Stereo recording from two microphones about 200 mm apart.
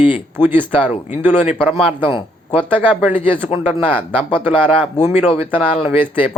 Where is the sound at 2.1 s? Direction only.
10° right (ahead or behind).